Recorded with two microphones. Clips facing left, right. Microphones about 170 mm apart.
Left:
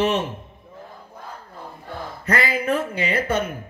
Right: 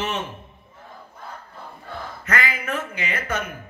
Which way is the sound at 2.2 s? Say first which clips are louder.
Left 4 dB; 35° left (ahead or behind).